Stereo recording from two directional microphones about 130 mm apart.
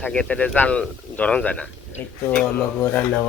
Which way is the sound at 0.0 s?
10° left (ahead or behind).